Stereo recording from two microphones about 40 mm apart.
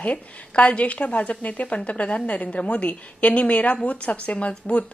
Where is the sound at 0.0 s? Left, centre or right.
Left.